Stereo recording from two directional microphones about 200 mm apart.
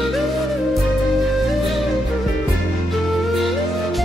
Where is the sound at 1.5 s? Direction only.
Centre (ahead or behind).